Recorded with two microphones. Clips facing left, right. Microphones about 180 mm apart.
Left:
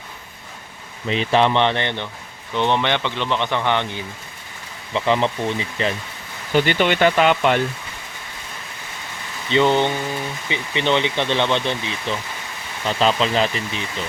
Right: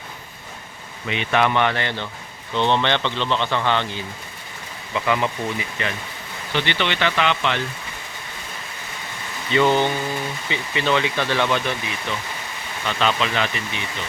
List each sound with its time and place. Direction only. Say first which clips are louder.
1.0 s speech: left 3 dB; 35° left (ahead or behind); by 4.0 s 15° left (ahead or behind)
4.9 s speech: left 3 dB; 25° left (ahead or behind)
6.5 s speech: left 6 dB; 45° left (ahead or behind)
9.5 s speech: left 1 dB; 20° left (ahead or behind)